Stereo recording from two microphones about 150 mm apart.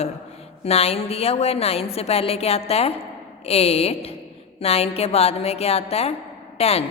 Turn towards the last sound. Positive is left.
turn(degrees=40)  # may be behind; listen again after turning